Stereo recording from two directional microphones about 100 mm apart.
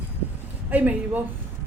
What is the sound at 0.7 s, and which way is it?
Speech, 15° right (ahead or behind).